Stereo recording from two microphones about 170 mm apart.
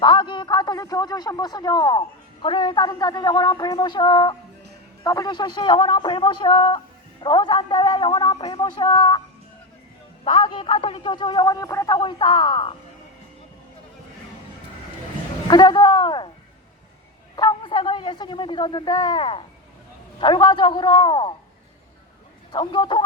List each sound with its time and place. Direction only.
0.0 s a man's voice: 30° left (ahead or behind)
10.2 s a man's voice: 30° left (ahead or behind)
15.4 s a man's voice: 25° left (ahead or behind)
17.3 s a man's voice: 25° left (ahead or behind)
22.5 s a man's voice: 25° left (ahead or behind)